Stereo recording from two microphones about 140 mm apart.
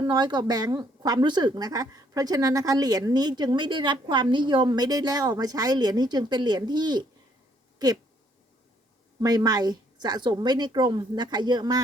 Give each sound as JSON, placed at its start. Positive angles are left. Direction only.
{"t": 0.0, "sound": "speech", "side_deg": -30}
{"t": 9.2, "sound": "a woman's voice", "side_deg": -30}